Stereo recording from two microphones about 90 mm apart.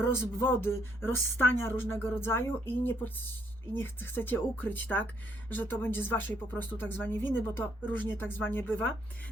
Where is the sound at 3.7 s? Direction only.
25° left (ahead or behind).